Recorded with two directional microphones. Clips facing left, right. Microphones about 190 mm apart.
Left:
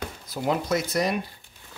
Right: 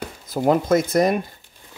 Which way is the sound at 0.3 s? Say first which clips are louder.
Right 8 dB; 45° right (ahead or behind).